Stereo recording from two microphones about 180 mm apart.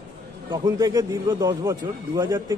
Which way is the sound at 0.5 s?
20° right (ahead or behind).